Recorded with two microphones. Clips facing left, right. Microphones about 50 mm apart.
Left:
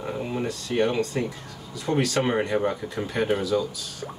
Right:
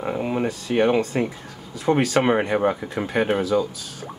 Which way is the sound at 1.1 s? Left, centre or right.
Right.